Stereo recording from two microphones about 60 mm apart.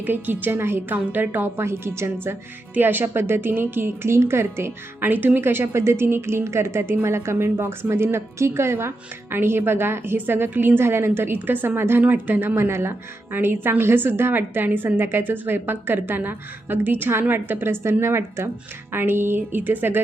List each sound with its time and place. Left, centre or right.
0.0 s a woman's voice: right
1.6 s a woman's voice: right
5.4 s a woman's voice: right